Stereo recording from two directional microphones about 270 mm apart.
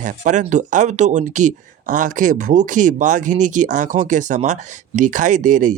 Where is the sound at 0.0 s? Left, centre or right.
Right.